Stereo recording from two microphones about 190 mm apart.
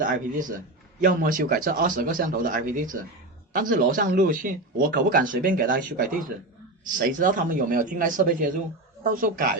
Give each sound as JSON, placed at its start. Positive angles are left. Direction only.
{"t": 0.0, "sound": "speech", "side_deg": -45}